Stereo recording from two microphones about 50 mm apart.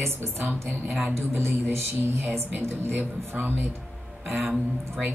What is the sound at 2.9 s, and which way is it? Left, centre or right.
Speech, right.